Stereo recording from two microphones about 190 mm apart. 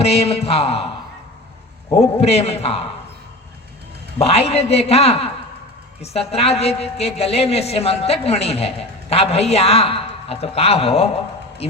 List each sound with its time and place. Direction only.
0.0 s a woman's voice: 30° left (ahead or behind)
2.0 s a woman's voice: 35° left (ahead or behind)
4.2 s a woman's voice: 30° left (ahead or behind)